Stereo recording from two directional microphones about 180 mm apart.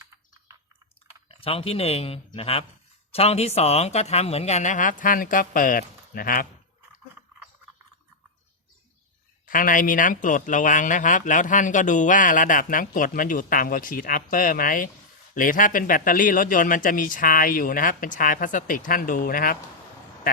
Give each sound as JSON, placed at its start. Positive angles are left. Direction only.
{"t": 1.3, "sound": "speech", "side_deg": 30}
{"t": 9.5, "sound": "a man's voice", "side_deg": 50}